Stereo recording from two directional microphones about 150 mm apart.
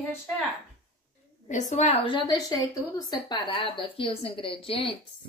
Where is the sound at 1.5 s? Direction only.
55° left (ahead or behind); by 4.9 s 35° left (ahead or behind).